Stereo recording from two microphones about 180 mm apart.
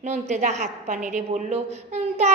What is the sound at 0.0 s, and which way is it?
A woman's voice, 40° right (ahead or behind).